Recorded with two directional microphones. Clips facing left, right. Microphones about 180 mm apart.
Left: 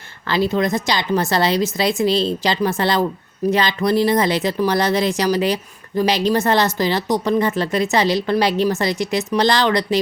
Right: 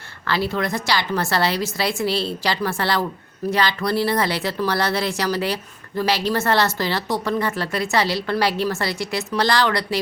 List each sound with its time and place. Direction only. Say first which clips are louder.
0.3 s speech: left 5 dB; 20° left (ahead or behind)